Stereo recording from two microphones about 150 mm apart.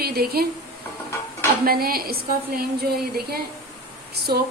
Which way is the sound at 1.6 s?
80° right.